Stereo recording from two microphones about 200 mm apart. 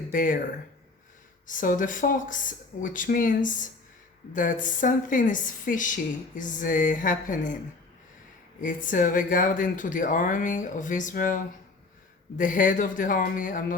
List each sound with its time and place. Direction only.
0.1 s speech: 45° left (ahead or behind)
1.5 s speech: 40° left (ahead or behind)
8.6 s speech: 40° left (ahead or behind)
12.4 s speech: 40° left (ahead or behind)